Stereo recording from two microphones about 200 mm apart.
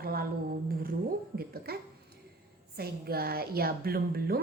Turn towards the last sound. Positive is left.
turn(degrees=-50)  # may be behind; listen again after turning